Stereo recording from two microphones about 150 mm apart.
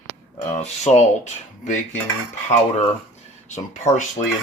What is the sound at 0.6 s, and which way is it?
Speech, 50° left (ahead or behind).